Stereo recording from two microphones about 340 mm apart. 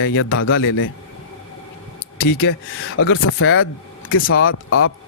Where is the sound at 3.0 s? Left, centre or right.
Left.